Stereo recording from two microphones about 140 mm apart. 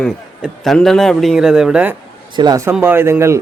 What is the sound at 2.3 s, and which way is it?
Speech, 30° right (ahead or behind).